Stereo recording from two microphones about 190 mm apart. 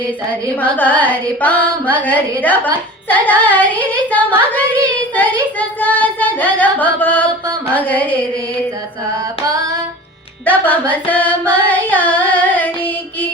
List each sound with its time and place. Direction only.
0.6 s carnatic music: 10° left (ahead or behind)
5.5 s carnatic music: 10° left (ahead or behind)
9.4 s female singing: 20° right (ahead or behind)
10.4 s singing: 10° left (ahead or behind)